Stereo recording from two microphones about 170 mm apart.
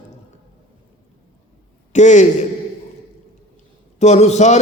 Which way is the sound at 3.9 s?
45° left (ahead or behind).